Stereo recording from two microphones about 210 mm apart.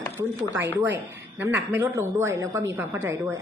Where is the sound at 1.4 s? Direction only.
10° right (ahead or behind).